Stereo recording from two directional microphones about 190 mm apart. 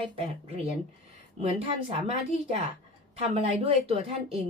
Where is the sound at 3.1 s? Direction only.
35° right (ahead or behind).